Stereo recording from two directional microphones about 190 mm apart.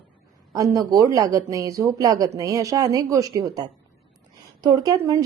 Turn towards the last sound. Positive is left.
turn(degrees=-15)  # may be behind; listen again after turning